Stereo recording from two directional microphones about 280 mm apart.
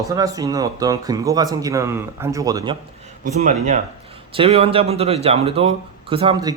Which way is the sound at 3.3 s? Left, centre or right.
Right.